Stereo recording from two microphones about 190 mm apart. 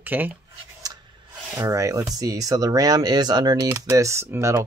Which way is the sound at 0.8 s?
20° right (ahead or behind).